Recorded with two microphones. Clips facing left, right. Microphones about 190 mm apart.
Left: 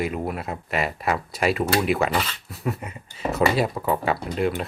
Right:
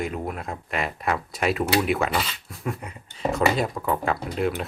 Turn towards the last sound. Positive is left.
turn(degrees=0)  # may be behind; listen again after turning